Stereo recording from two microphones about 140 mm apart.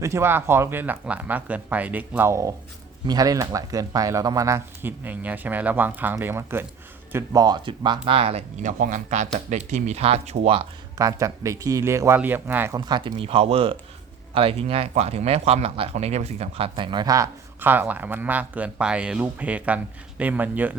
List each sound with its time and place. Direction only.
0.0 s speech: 20° right (ahead or behind)
7.4 s speech: 35° right (ahead or behind); by 8.7 s 50° right (ahead or behind)
8.8 s speech: 60° right (ahead or behind); by 10.7 s 45° right (ahead or behind)
10.9 s a man's voice: 25° right (ahead or behind)
12.7 s speech: 30° right (ahead or behind)
17.6 s speech: 15° right (ahead or behind)